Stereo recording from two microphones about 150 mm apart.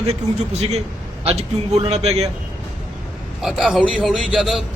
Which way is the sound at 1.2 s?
45° right (ahead or behind).